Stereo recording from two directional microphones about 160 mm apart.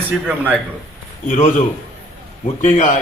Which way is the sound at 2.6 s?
55° left (ahead or behind).